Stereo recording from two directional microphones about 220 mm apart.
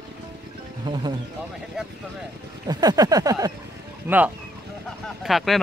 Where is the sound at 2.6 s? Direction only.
15° right (ahead or behind).